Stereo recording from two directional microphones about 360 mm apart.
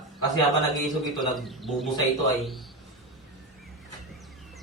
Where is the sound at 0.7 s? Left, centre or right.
Centre.